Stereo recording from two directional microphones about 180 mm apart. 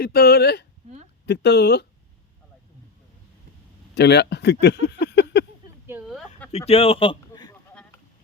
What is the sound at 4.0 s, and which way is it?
Speech, 70° left (ahead or behind).